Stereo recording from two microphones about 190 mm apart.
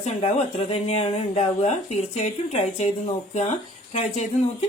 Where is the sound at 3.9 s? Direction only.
35° left (ahead or behind).